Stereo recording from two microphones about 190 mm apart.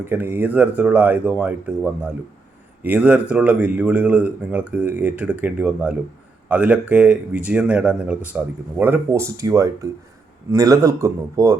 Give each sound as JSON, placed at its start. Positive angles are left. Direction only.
{"t": 0.0, "sound": "speech", "side_deg": -10}